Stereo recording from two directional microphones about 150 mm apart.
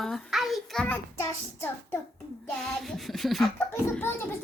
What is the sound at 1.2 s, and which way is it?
Child singing, 15° left (ahead or behind).